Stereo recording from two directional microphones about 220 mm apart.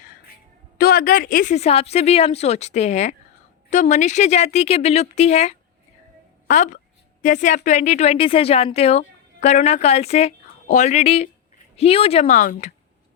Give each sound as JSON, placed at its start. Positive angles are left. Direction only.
{"t": 0.8, "sound": "a woman's voice", "side_deg": 40}
{"t": 12.2, "sound": "speech", "side_deg": 35}